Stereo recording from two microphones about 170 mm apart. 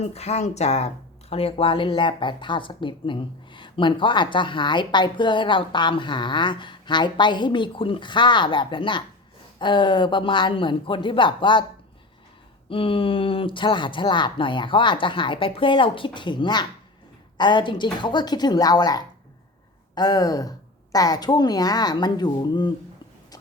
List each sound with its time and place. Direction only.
0.0 s speech: 40° left (ahead or behind)
12.6 s speech: 30° left (ahead or behind)